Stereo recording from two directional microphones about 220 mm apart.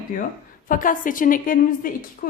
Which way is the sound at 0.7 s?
40° left (ahead or behind).